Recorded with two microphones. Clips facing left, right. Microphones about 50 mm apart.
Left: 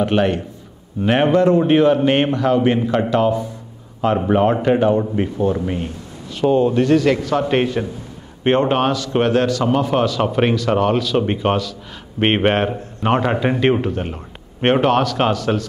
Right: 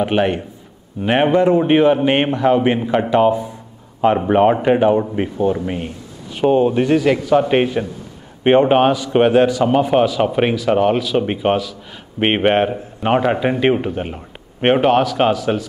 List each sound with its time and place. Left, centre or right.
0.0 s speech: centre